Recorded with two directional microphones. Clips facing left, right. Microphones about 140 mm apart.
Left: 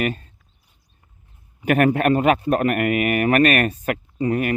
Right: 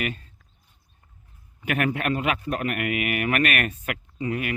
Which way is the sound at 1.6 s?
45° left (ahead or behind).